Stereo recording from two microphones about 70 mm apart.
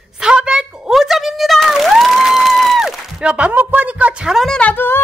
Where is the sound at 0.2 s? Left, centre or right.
Centre.